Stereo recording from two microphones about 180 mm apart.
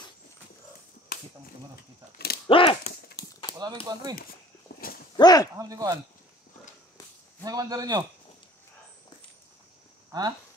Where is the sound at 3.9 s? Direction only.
25° right (ahead or behind).